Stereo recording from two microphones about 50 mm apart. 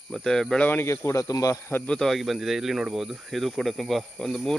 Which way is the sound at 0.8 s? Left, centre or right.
Left.